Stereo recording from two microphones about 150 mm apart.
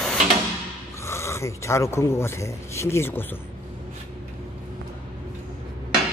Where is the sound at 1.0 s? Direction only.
20° left (ahead or behind).